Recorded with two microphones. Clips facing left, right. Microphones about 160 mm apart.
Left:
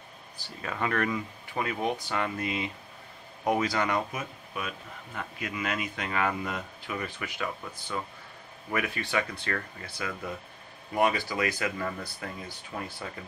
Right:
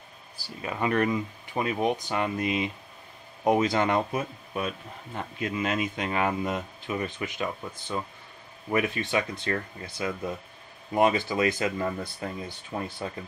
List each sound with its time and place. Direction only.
0.6 s speech: 20° right (ahead or behind)